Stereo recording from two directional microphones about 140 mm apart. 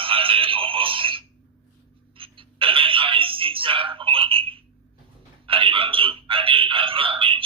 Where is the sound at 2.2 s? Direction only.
40° right (ahead or behind).